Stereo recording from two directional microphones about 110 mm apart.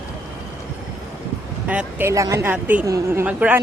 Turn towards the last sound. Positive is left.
turn(degrees=-15)  # may be behind; listen again after turning